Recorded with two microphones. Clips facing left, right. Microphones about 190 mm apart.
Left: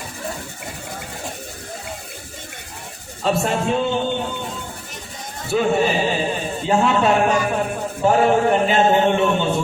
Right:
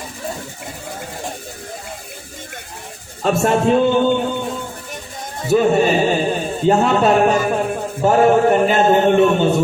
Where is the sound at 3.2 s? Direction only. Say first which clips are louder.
Right 5 dB; 50° right (ahead or behind).